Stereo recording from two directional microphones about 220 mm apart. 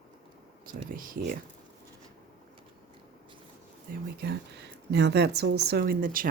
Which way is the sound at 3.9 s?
40° right (ahead or behind).